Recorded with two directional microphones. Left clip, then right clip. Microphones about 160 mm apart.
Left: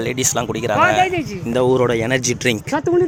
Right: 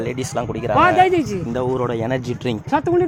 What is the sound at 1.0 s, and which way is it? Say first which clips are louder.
Speech: right 3 dB; 90° right.